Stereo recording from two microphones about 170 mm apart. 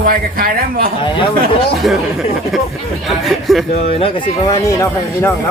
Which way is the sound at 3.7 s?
40° left (ahead or behind).